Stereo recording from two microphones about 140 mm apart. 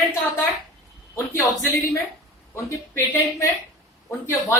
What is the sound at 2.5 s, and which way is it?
A man's voice, 20° left (ahead or behind).